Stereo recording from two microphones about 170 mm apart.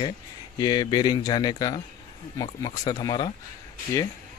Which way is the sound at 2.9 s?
25° left (ahead or behind).